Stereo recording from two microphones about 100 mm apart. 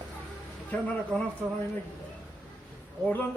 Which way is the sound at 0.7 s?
15° left (ahead or behind).